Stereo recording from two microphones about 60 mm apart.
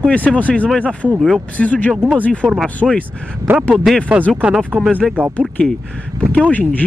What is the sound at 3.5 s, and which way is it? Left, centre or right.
Speech, right.